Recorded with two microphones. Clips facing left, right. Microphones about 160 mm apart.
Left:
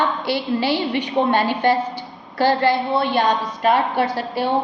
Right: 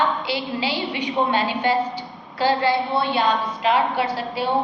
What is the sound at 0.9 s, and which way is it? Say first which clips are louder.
Speech: left 1 dB; 45° left (ahead or behind).